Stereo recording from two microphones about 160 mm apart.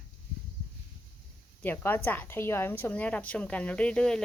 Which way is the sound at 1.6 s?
10° left (ahead or behind).